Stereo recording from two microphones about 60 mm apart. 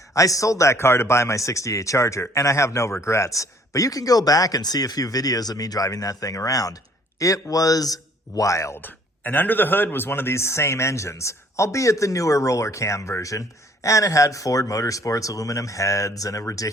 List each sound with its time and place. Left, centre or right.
0.1 s a man's voice: left
7.2 s speech: left
8.4 s speech: left
8.7 s speech: left